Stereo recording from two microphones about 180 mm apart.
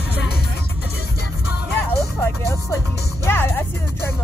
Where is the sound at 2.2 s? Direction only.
15° left (ahead or behind).